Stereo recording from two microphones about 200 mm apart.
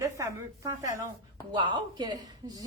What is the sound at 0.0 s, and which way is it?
A woman's voice, 15° right (ahead or behind).